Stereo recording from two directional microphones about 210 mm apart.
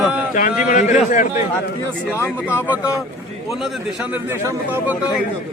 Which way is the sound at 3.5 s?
Centre (ahead or behind).